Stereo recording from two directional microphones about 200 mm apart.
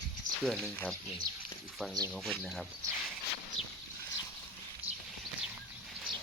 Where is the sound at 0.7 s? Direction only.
5° left (ahead or behind).